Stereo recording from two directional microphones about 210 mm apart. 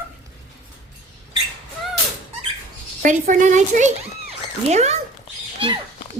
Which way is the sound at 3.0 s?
40° right (ahead or behind).